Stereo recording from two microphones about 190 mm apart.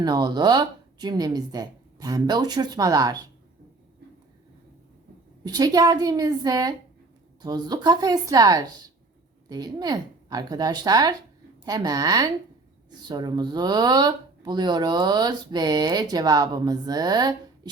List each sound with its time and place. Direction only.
0.0 s speech: 20° right (ahead or behind)
5.4 s speech: 20° right (ahead or behind)